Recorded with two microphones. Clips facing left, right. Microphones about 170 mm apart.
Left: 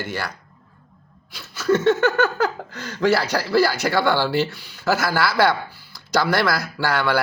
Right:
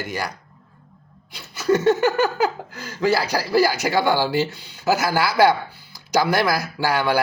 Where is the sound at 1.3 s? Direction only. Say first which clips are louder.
Even; 20° right (ahead or behind).